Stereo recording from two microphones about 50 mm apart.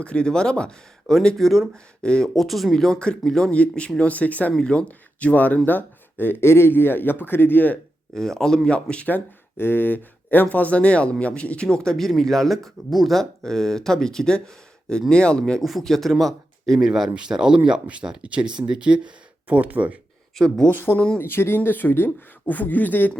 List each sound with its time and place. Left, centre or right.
0.0 s speech: left
1.4 s speech: centre
2.0 s speech: centre
2.3 s speech: centre
3.0 s speech: centre
4.5 s speech: centre
4.9 s speech: left
8.1 s speech: centre
9.0 s speech: left; by 15.6 s centre
15.6 s speech: centre
16.7 s speech: centre; by 20.0 s right
20.3 s speech: centre
20.7 s speech: left